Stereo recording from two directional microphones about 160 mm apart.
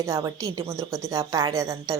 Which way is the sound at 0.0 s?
20° right (ahead or behind).